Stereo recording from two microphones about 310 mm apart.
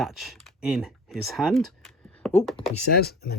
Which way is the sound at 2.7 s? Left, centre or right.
Left.